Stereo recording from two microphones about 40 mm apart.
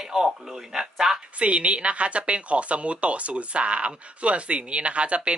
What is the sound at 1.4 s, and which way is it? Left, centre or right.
Speech, right.